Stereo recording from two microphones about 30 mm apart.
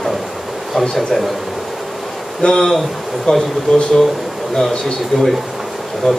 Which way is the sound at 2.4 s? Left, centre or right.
Left.